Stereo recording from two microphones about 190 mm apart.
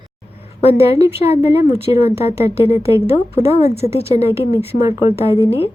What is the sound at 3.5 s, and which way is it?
A woman's voice, 30° left (ahead or behind).